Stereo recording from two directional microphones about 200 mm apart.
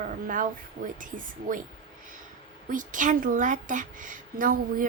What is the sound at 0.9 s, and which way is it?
Speech, 40° right (ahead or behind).